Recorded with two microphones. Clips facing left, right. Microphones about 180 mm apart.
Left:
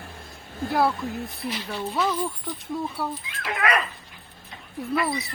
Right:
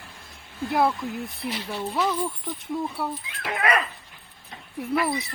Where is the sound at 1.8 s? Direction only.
Centre (ahead or behind).